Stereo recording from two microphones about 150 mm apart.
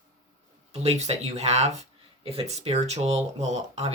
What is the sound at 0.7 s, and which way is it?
Speech, 45° right (ahead or behind).